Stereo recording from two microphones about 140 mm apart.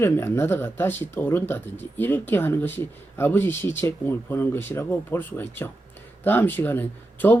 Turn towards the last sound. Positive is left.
turn(degrees=15)  # may be behind; listen again after turning